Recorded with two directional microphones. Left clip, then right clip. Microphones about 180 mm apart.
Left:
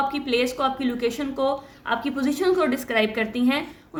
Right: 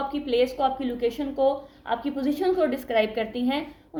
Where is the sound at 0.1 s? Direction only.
30° left (ahead or behind).